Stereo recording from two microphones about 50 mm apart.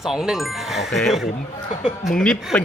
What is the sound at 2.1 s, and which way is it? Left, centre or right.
Speech, centre.